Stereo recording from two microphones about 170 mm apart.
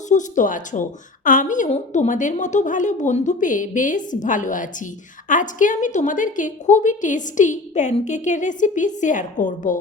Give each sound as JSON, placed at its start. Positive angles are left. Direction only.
{"t": 0.1, "sound": "a woman's voice", "side_deg": 50}